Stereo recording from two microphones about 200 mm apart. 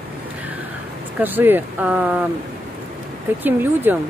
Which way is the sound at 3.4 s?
10° right (ahead or behind).